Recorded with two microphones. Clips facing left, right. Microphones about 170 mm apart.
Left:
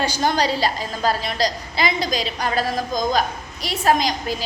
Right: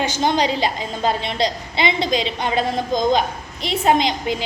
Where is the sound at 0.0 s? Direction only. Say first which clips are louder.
Right 1 dB; 20° right (ahead or behind).